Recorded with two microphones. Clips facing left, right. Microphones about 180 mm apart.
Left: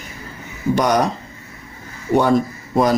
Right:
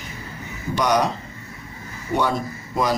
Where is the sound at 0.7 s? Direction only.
45° left (ahead or behind).